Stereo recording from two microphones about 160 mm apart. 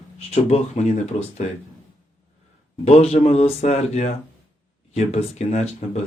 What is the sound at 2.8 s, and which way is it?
Speech, 40° left (ahead or behind).